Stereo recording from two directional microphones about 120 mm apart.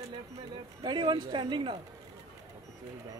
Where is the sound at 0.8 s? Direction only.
40° right (ahead or behind).